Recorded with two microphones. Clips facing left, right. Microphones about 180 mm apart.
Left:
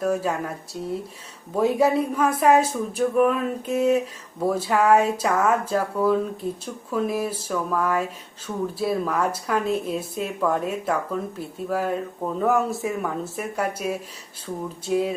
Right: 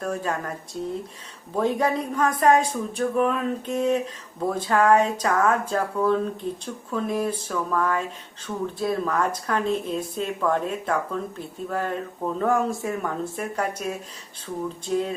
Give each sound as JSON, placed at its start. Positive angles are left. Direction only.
{"t": 0.0, "sound": "speech", "side_deg": 5}